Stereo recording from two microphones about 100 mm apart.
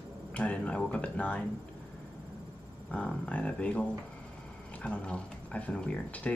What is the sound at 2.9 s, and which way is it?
Speech, 10° left (ahead or behind).